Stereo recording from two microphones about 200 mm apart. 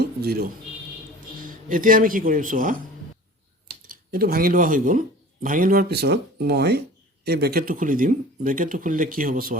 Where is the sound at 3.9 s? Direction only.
45° right (ahead or behind).